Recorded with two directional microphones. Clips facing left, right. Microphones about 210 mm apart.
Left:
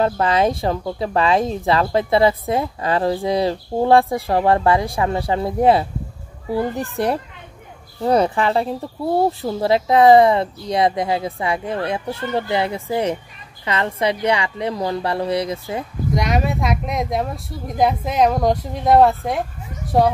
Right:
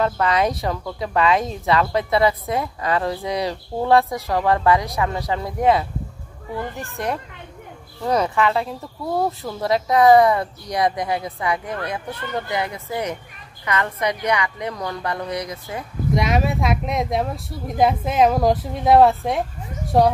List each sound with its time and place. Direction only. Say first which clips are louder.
0.0 s speech: left 2 dB; 30° left (ahead or behind)
16.1 s speech: even; centre (ahead or behind)